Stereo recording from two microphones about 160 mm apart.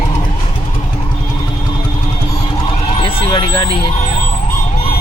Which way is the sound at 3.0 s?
35° left (ahead or behind).